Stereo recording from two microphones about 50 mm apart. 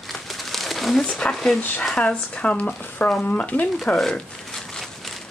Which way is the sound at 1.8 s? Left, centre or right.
Left.